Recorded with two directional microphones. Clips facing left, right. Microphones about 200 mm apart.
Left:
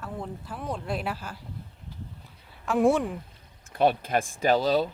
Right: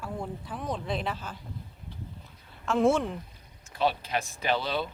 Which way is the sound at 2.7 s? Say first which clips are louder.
Left 2 dB; 15° left (ahead or behind).